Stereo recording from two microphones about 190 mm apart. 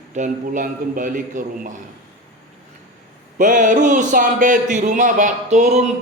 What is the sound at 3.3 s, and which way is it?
A man's voice, 45° right (ahead or behind).